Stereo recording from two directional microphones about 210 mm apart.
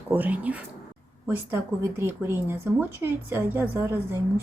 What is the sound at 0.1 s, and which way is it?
Speech, 10° right (ahead or behind).